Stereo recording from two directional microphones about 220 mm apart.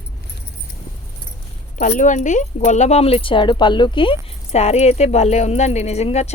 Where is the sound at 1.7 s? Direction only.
35° left (ahead or behind).